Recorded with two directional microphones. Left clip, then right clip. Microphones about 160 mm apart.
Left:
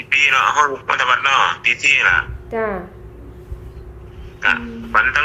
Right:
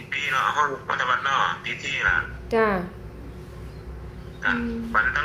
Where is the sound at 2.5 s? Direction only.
15° right (ahead or behind).